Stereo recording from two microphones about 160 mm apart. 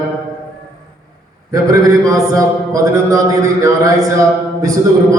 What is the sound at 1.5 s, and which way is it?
A man's voice, 20° right (ahead or behind).